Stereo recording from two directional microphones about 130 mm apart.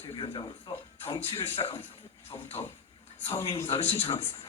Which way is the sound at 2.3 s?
40° left (ahead or behind).